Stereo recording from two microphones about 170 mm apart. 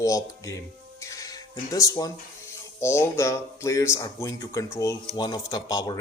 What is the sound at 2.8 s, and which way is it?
A man's voice, 15° left (ahead or behind).